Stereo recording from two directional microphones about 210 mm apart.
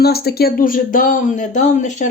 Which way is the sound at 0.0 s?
50° left (ahead or behind).